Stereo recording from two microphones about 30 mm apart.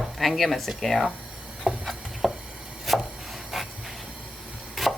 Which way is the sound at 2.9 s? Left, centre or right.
Centre.